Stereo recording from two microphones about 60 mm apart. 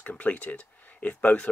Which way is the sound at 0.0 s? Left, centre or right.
Left.